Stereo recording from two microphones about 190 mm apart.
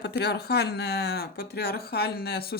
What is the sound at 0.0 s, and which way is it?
Speech, 60° left (ahead or behind).